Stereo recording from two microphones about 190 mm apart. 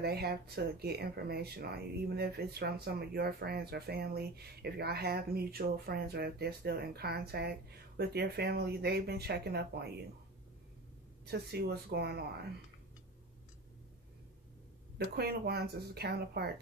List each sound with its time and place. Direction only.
0.0 s speech: 55° right (ahead or behind)
11.2 s speech: 60° right (ahead or behind)
15.0 s speech: 55° right (ahead or behind)